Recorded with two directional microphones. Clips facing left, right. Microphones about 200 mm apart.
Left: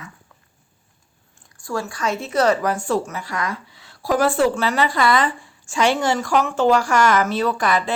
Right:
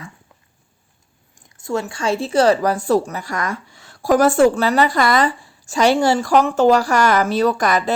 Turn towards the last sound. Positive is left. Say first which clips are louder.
# right 3 dB
turn(degrees=-40)  # may be behind; listen again after turning